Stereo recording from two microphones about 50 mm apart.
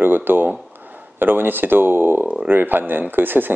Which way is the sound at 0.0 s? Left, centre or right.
Right.